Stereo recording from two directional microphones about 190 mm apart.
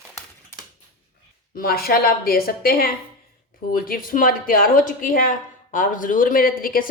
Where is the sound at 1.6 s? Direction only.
50° left (ahead or behind).